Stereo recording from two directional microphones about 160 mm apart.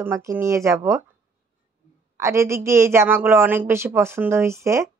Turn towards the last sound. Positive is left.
turn(degrees=-20)  # may be behind; listen again after turning